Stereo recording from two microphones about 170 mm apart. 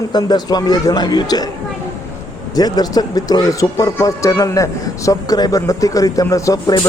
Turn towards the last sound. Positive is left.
turn(degrees=20)  # may be behind; listen again after turning